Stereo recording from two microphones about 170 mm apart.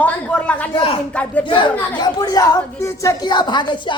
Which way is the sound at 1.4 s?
30° left (ahead or behind).